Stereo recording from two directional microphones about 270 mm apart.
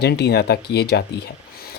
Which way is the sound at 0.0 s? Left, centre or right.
Left.